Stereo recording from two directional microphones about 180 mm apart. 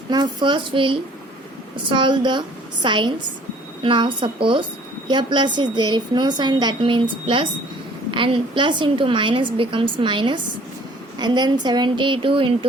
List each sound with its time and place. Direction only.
0.1 s a woman's voice: 25° right (ahead or behind)